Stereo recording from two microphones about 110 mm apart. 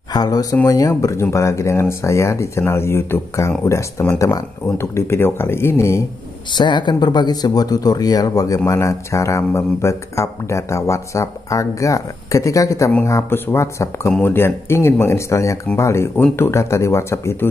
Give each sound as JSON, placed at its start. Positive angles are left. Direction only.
{"t": 0.1, "sound": "speech", "side_deg": 35}
{"t": 6.5, "sound": "speech", "side_deg": 45}